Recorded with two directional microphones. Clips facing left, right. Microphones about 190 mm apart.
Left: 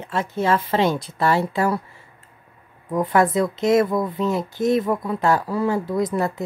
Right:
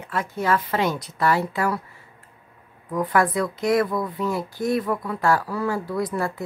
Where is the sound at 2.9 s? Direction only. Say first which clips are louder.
Left 3 dB; 25° left (ahead or behind).